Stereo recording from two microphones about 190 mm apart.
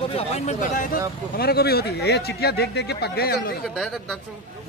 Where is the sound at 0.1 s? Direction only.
35° left (ahead or behind); by 3.5 s 55° left (ahead or behind).